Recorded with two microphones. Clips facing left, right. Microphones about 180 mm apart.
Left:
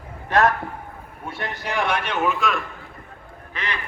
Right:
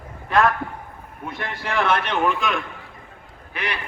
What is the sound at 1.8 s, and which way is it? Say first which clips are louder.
Speech: right 2 dB; 10° left (ahead or behind).